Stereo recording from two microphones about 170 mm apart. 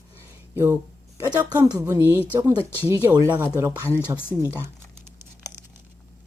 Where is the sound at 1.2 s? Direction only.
15° right (ahead or behind).